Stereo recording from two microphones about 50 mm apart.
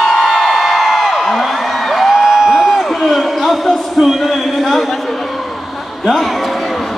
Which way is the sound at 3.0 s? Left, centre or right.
Centre.